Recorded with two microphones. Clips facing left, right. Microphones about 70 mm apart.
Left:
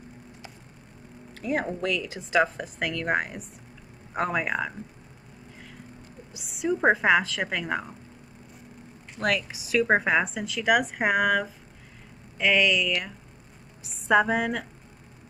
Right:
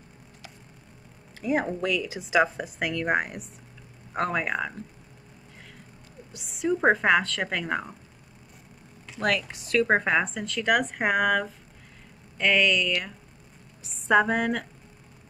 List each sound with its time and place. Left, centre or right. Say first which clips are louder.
1.4 s speech: right 2 dB; centre
6.3 s speech: right 1 dB; centre
9.2 s speech: even; centre